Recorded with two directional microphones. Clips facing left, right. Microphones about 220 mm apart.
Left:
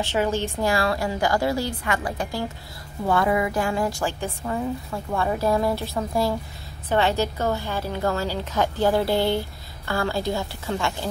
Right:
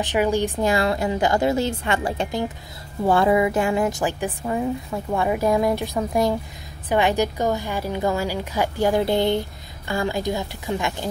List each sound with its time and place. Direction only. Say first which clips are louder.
0.0 s a woman's voice: right 3 dB; 15° right (ahead or behind)